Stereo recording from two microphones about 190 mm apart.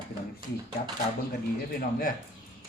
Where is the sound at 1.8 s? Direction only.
50° left (ahead or behind).